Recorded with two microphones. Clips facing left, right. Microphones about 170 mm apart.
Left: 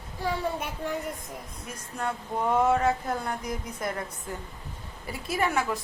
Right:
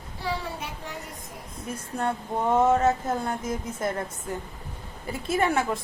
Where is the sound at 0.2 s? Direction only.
50° left (ahead or behind).